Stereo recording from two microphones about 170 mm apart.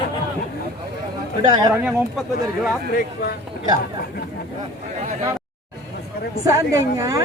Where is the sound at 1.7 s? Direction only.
5° right (ahead or behind).